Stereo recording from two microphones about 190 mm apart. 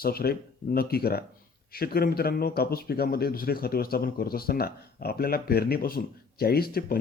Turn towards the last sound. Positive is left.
turn(degrees=50)  # may be behind; listen again after turning